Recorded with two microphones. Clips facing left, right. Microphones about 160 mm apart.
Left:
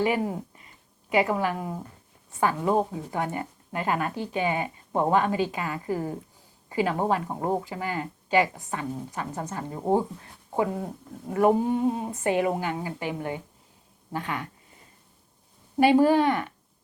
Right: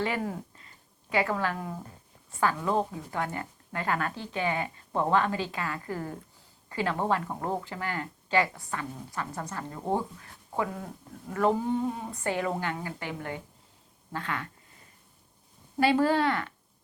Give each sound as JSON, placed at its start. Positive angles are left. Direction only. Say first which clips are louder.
{"t": 0.0, "sound": "a woman's voice", "louder": "left 5 dB", "side_deg": 15}
{"t": 15.8, "sound": "speech", "louder": "left 5 dB", "side_deg": 15}